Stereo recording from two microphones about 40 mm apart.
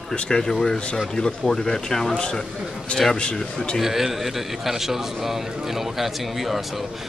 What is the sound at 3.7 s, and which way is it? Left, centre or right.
A man's voice, centre.